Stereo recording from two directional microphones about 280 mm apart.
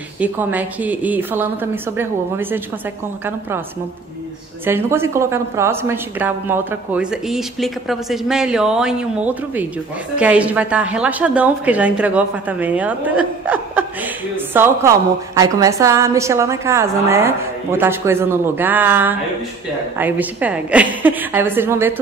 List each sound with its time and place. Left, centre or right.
0.2 s a woman's voice: centre
4.6 s a woman's voice: centre